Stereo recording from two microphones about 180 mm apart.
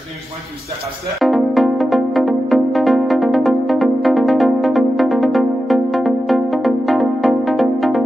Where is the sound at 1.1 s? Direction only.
Centre (ahead or behind).